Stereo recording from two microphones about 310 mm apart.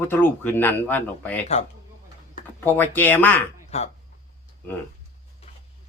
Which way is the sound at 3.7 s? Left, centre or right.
Left.